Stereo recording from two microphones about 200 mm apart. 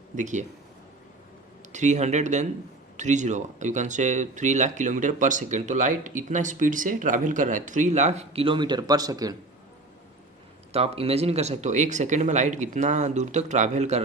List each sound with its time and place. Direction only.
0.2 s speech: 35° right (ahead or behind)
1.7 s speech: 35° right (ahead or behind); by 9.3 s 20° right (ahead or behind)
10.7 s speech: 30° right (ahead or behind)